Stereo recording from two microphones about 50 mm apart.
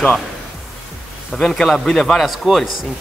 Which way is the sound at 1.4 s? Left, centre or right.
Centre.